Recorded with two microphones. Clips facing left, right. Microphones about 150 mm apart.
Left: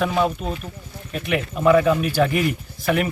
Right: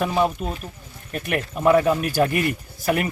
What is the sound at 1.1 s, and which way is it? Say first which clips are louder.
Speech: left 2 dB; 50° right (ahead or behind).